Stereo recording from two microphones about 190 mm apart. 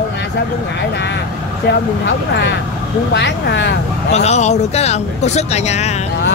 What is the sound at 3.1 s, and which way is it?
Speech, 65° left (ahead or behind).